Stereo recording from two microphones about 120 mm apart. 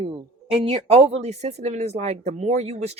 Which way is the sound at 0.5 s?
50° right (ahead or behind).